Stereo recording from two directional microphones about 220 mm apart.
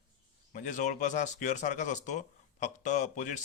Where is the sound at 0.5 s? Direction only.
35° left (ahead or behind).